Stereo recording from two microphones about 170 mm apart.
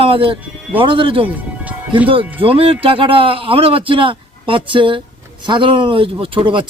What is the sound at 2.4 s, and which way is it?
Speech, 35° right (ahead or behind).